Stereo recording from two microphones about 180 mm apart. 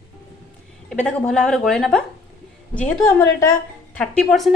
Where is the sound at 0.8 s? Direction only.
5° left (ahead or behind).